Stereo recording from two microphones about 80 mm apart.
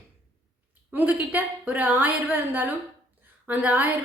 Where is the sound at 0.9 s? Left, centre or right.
Centre.